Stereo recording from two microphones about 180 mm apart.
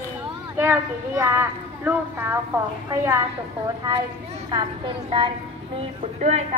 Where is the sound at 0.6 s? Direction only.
10° right (ahead or behind).